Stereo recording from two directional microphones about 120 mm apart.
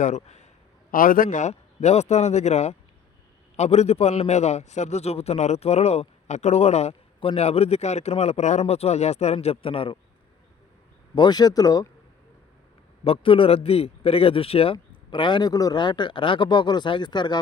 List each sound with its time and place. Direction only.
0.2 s a man's voice: 70° left (ahead or behind)
1.3 s a man's voice: 80° left; by 10.0 s 50° left (ahead or behind)
11.1 s speech: 35° left (ahead or behind)
13.1 s speech: 50° left (ahead or behind)